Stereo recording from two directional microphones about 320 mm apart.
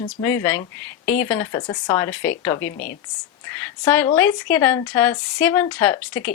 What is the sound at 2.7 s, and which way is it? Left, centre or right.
Speech, left.